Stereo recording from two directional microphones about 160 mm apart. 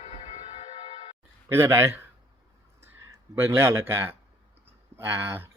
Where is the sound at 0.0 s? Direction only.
40° left (ahead or behind).